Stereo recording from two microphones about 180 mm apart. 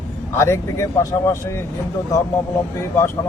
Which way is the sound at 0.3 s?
15° left (ahead or behind).